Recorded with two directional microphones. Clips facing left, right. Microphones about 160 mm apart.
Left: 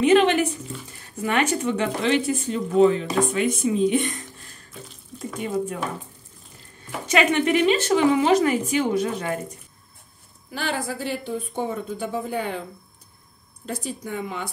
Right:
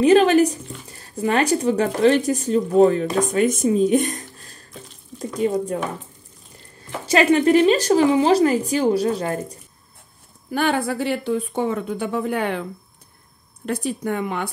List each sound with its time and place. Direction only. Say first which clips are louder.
0.0 s a woman's voice: right 4 dB; 40° right (ahead or behind)
7.1 s a woman's voice: right 5 dB; 35° right (ahead or behind)
10.5 s speech: right 7 dB; 55° right (ahead or behind); by 12.6 s 70° right (ahead or behind)
13.7 s speech: right 7 dB; 65° right (ahead or behind)